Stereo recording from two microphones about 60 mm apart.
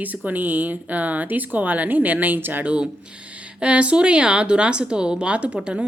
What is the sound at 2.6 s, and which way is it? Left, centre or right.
A woman's voice, right.